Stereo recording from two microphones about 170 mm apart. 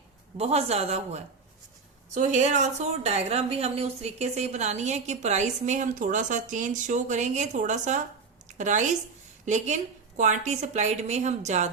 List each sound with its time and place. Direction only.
0.3 s a woman's voice: 35° right (ahead or behind)